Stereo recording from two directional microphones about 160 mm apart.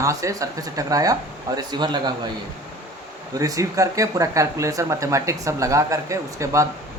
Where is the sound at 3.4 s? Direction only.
20° right (ahead or behind).